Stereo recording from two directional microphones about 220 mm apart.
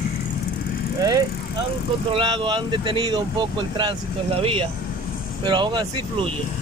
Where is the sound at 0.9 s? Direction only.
15° right (ahead or behind).